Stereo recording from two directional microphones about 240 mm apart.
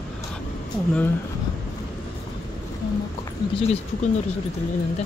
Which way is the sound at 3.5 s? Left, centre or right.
Left.